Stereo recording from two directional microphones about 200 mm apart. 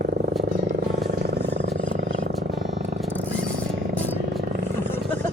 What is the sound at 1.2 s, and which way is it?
Wild animals, 55° right (ahead or behind).